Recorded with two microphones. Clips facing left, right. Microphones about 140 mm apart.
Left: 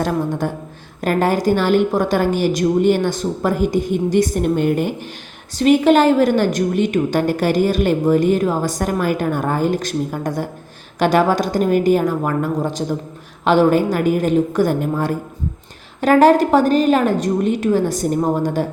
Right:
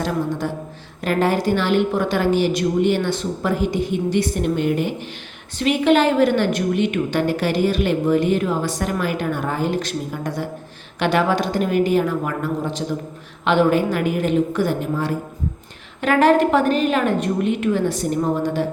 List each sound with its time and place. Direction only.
0.0 s a woman's voice: 50° left (ahead or behind)